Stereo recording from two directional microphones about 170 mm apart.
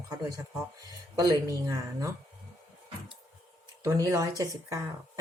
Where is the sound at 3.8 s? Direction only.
20° right (ahead or behind).